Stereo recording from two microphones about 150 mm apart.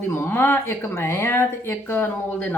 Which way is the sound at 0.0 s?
15° left (ahead or behind).